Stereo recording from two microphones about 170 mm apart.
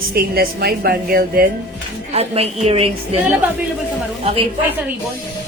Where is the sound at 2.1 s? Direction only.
35° right (ahead or behind).